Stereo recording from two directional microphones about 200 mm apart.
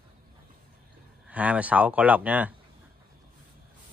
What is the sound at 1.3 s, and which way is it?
Speech, 5° right (ahead or behind).